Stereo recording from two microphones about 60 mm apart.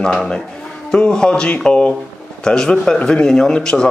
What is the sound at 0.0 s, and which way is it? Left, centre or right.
Speech, centre.